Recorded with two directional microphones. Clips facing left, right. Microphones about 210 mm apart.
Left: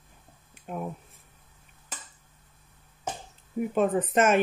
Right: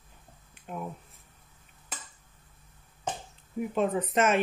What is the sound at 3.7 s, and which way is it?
Speech, 45° left (ahead or behind).